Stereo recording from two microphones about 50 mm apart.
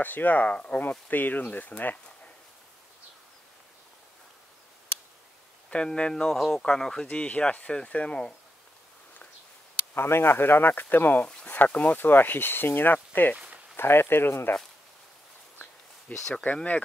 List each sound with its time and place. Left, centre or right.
0.0 s speech: left
5.7 s speech: left
6.3 s speech: centre
7.1 s speech: left
9.9 s speech: left
11.2 s a sound: centre
11.5 s speech: left
13.7 s speech: left
16.2 s speech: centre